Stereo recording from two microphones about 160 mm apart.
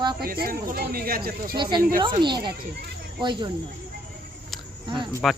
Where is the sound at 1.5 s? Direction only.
30° right (ahead or behind).